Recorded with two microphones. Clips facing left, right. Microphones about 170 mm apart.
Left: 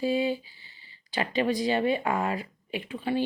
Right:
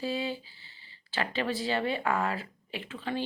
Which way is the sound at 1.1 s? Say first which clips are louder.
Left 5 dB; 15° left (ahead or behind).